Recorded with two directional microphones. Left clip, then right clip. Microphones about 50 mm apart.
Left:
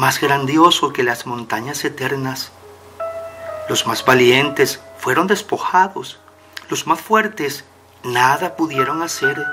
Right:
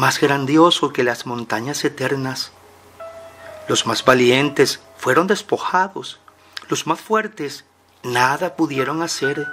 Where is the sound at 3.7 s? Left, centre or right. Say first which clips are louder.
Even; right.